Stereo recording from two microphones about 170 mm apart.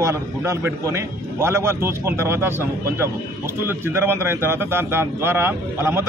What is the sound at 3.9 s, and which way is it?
Speech, 15° right (ahead or behind).